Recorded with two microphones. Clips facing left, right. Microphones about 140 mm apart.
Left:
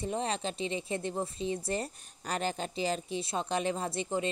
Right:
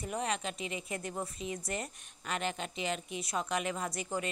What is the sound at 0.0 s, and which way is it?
Speech, 30° left (ahead or behind).